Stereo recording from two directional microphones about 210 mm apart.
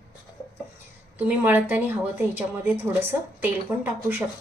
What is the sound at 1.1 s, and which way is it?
A woman's voice, 10° right (ahead or behind).